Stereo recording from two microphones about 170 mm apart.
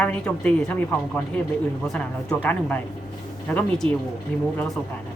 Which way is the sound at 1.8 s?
5° left (ahead or behind).